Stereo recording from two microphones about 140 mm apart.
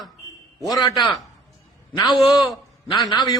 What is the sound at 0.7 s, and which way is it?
Speech, 25° left (ahead or behind).